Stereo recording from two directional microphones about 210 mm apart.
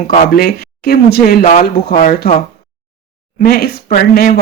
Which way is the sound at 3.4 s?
45° left (ahead or behind).